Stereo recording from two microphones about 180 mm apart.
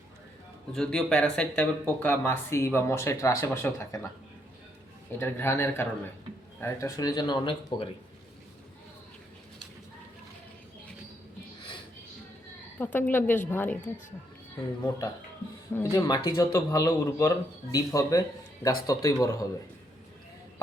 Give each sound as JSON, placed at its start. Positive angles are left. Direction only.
{"t": 0.7, "sound": "speech", "side_deg": 5}
{"t": 5.1, "sound": "speech", "side_deg": 15}
{"t": 12.8, "sound": "speech", "side_deg": 10}
{"t": 15.7, "sound": "speech", "side_deg": 15}